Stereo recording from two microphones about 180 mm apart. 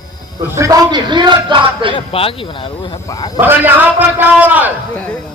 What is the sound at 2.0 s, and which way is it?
Speech, 30° left (ahead or behind).